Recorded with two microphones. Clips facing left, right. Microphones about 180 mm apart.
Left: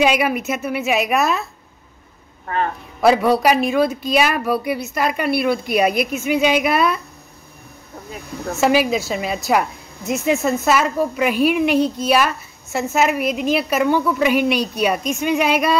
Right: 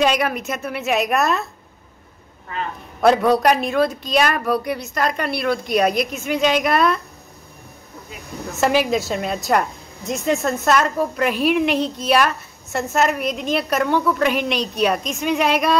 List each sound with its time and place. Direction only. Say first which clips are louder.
0.0 s a woman's voice: left 2 dB; 5° left (ahead or behind)
2.4 s speech: left 6 dB; 50° left (ahead or behind)
3.0 s a woman's voice: even; 5° left (ahead or behind)
8.5 s a woman's voice: left 1 dB; centre (ahead or behind)